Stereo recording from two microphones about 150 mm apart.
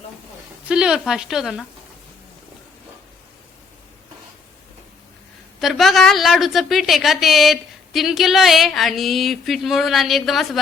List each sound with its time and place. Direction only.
0.7 s a woman's voice: 5° right (ahead or behind)
5.5 s a woman's voice: centre (ahead or behind)